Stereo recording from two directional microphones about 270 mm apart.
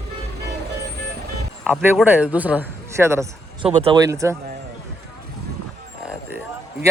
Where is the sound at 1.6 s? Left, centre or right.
Centre.